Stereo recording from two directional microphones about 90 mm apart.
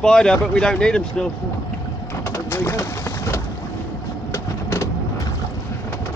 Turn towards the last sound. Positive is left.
turn(degrees=35)  # may be behind; listen again after turning